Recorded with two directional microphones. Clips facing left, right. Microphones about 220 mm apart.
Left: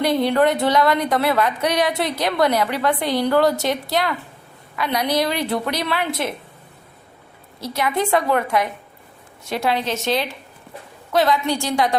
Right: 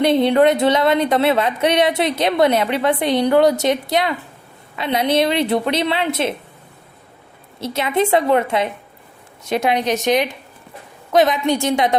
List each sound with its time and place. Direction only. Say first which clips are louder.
0.0 s speech: right 4 dB; 20° right (ahead or behind)
7.6 s a woman's voice: right 3 dB; 25° right (ahead or behind)